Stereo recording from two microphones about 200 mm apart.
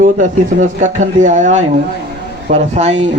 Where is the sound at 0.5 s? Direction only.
40° right (ahead or behind).